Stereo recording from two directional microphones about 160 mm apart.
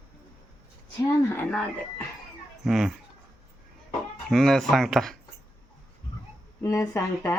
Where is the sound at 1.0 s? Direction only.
15° left (ahead or behind).